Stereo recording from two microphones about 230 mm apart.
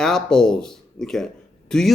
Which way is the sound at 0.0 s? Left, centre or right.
Centre.